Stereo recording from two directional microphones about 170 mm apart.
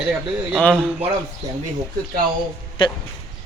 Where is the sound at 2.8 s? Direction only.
30° left (ahead or behind).